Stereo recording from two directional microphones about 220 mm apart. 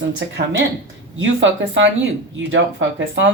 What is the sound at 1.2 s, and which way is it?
Speech, 60° right (ahead or behind).